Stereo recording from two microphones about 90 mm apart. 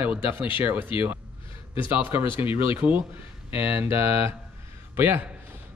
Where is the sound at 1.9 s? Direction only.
20° right (ahead or behind).